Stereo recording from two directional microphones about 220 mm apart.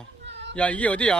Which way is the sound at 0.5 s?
5° left (ahead or behind).